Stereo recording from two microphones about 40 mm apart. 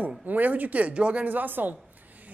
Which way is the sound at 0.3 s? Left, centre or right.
Right.